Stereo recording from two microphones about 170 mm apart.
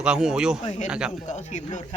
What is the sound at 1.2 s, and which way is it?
Speech, 45° left (ahead or behind).